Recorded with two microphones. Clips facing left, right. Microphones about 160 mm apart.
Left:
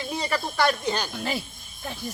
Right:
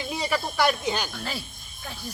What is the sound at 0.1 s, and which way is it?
Speech, 5° right (ahead or behind).